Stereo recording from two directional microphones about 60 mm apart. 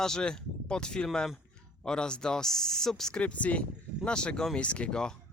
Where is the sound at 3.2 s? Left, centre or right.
Left.